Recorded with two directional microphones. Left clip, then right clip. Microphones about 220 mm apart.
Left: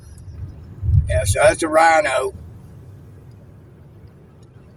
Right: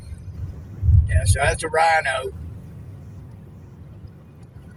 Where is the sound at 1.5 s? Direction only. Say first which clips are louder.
Left 4 dB; 45° left (ahead or behind).